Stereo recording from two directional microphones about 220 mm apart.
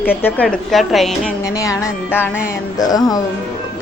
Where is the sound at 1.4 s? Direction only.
15° left (ahead or behind).